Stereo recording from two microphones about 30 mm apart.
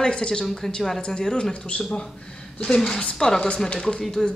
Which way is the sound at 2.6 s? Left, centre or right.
Left.